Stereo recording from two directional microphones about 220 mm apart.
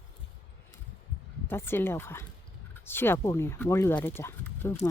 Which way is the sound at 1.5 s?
10° left (ahead or behind).